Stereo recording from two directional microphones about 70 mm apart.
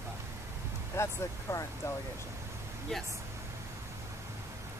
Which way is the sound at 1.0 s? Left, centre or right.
Left.